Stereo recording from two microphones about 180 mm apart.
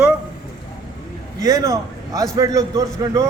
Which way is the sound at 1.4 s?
20° right (ahead or behind).